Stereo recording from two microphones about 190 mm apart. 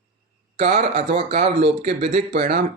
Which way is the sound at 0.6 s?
35° right (ahead or behind).